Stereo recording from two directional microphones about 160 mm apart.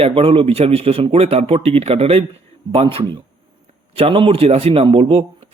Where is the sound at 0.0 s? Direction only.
35° right (ahead or behind).